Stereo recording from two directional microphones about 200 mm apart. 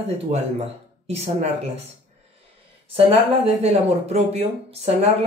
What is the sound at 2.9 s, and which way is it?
Speech, 30° right (ahead or behind).